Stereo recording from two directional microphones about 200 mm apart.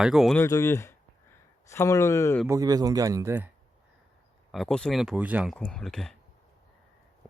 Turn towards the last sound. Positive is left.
turn(degrees=0)  # may be behind; listen again after turning